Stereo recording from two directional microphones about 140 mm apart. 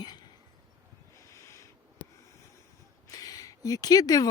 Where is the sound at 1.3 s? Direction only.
20° left (ahead or behind).